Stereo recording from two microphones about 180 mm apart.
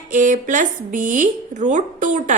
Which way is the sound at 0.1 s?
45° right (ahead or behind).